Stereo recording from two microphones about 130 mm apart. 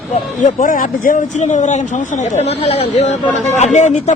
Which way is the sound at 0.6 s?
90° left.